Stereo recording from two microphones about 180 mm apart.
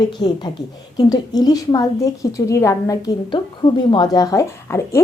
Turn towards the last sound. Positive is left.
turn(degrees=15)  # may be behind; listen again after turning